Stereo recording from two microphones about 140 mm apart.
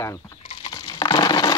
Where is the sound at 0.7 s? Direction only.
30° left (ahead or behind).